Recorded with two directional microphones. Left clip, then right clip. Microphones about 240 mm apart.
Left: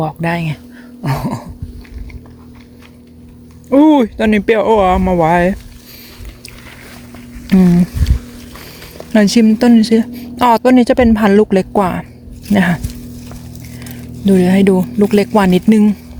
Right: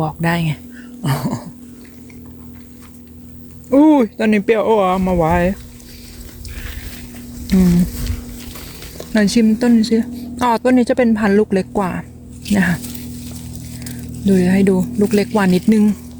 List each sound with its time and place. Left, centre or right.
0.0 s speech: centre
3.7 s speech: centre
7.5 s a sound: left
9.1 s speech: centre
14.3 s speech: centre